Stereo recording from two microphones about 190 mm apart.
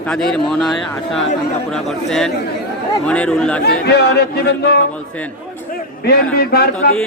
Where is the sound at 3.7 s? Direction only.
60° left (ahead or behind).